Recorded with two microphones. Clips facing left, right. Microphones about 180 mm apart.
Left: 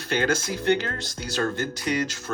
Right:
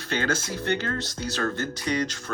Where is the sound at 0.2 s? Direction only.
15° left (ahead or behind).